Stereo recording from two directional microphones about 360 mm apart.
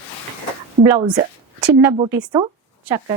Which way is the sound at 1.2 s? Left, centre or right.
Centre.